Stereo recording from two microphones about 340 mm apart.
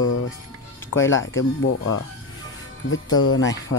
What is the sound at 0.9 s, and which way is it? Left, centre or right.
Speech, left.